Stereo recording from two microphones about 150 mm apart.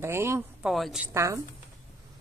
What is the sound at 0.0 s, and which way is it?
Speech, 15° right (ahead or behind).